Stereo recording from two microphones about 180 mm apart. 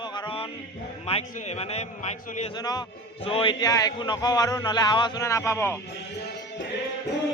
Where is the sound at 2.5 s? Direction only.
25° left (ahead or behind).